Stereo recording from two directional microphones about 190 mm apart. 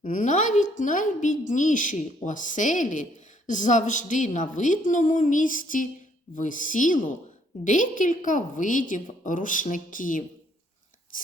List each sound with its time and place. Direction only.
0.0 s a woman's voice: 40° left (ahead or behind)